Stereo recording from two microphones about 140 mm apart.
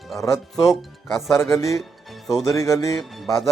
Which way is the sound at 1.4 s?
20° left (ahead or behind).